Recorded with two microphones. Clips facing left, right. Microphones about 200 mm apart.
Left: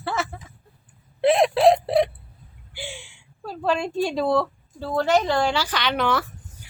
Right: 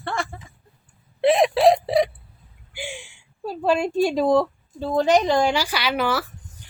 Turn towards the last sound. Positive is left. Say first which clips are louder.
# even
turn(degrees=-5)  # may be behind; listen again after turning